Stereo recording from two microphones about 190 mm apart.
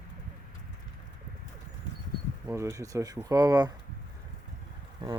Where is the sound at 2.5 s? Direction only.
15° right (ahead or behind).